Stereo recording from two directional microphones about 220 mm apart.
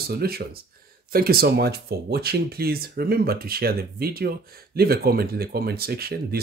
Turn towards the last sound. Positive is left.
turn(degrees=-45)  # may be behind; listen again after turning